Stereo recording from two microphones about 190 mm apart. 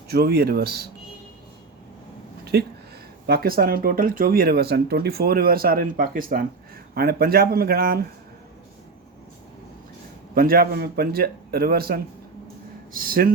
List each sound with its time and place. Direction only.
0.1 s speech: 55° right (ahead or behind)
2.4 s a sound: 60° right (ahead or behind)
3.2 s speech: 55° right (ahead or behind)
10.3 s speech: 50° right (ahead or behind)